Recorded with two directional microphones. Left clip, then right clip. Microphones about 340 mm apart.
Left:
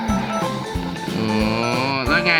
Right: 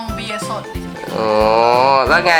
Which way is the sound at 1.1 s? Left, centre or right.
Centre.